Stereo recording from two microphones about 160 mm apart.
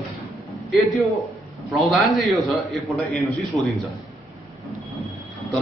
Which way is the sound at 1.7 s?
Centre (ahead or behind).